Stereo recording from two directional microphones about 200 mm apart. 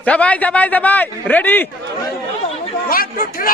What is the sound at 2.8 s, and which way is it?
Speech, 45° left (ahead or behind).